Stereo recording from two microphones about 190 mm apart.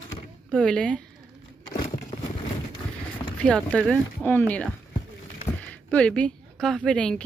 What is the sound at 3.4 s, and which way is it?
Speech, 5° left (ahead or behind).